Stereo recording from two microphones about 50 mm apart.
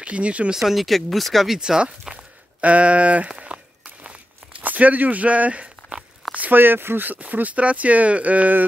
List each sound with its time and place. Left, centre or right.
0.0 s speech: right
0.5 s speech: centre
1.6 s speech: centre
3.3 s a sound: centre
6.3 s speech: right
6.6 s speech: right